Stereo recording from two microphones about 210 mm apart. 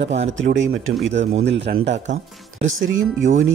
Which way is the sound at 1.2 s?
30° right (ahead or behind).